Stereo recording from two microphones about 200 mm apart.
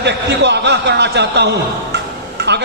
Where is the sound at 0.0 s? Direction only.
60° right (ahead or behind).